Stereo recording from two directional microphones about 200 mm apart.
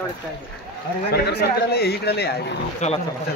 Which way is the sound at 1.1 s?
55° left (ahead or behind).